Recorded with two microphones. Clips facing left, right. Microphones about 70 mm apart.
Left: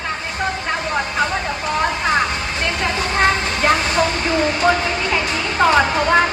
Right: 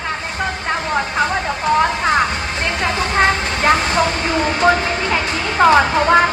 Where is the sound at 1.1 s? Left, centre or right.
Right.